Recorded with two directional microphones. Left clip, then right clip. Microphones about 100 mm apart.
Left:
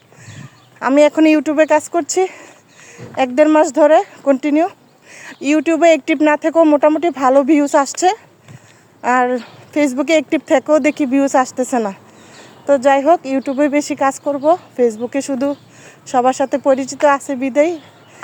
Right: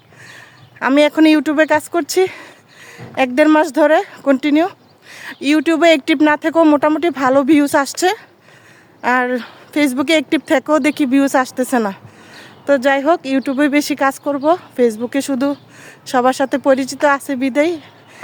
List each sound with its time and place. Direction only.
0.3 s speech: 35° right (ahead or behind)
13.3 s speech: 45° right (ahead or behind)